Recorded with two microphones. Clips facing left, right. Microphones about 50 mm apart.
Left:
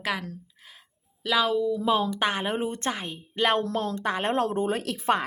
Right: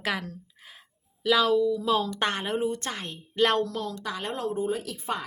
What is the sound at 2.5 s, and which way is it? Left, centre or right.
Speech, left.